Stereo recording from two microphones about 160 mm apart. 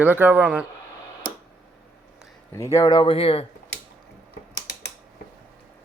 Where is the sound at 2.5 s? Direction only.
20° left (ahead or behind); by 3.5 s 35° left (ahead or behind).